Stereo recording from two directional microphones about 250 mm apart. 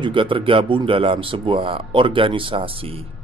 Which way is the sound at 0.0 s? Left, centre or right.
Centre.